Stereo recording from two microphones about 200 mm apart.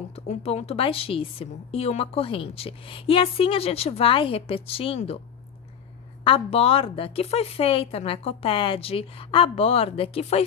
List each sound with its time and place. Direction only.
0.1 s a woman's voice: 30° left (ahead or behind)
6.2 s a woman's voice: 30° left (ahead or behind)